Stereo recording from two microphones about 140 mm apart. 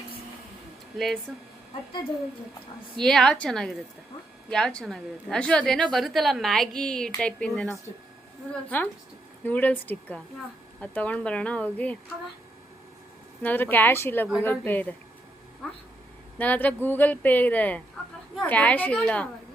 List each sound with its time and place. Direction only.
0.9 s a woman's voice: centre (ahead or behind)
3.0 s a woman's voice: 5° left (ahead or behind)
8.7 s speech: 10° left (ahead or behind)
13.4 s a woman's voice: 15° left (ahead or behind)